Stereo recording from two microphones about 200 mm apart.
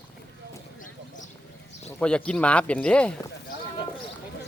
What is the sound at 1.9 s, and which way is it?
Speech, 5° left (ahead or behind).